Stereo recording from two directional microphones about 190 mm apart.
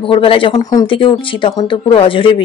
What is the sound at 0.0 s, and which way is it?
Speech, 30° left (ahead or behind).